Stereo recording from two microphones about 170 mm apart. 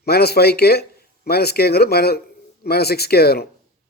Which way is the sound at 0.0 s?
70° left (ahead or behind).